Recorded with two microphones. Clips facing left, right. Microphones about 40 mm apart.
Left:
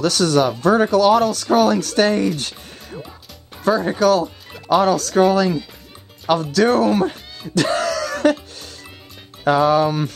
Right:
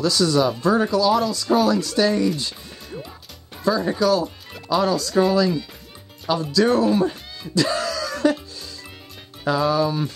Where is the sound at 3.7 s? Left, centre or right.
Left.